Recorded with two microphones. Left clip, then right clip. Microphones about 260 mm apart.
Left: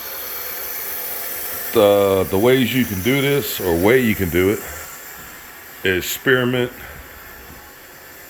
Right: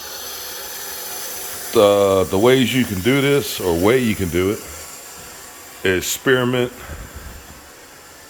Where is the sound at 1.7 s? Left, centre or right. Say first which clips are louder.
Right 1 dB; centre.